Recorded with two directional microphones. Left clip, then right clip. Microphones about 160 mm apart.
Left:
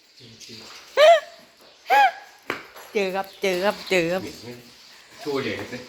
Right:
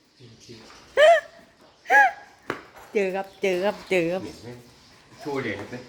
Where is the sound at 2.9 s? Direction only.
30° right (ahead or behind); by 4.1 s 10° right (ahead or behind).